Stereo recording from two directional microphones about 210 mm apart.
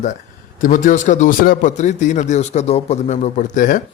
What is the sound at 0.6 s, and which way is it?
A man's voice, 40° left (ahead or behind).